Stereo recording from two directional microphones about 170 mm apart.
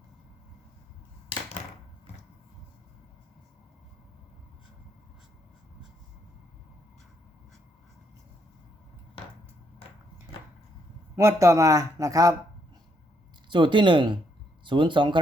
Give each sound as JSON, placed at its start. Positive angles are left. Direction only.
{"t": 11.2, "sound": "a man's voice", "side_deg": -15}
{"t": 13.5, "sound": "a man's voice", "side_deg": -30}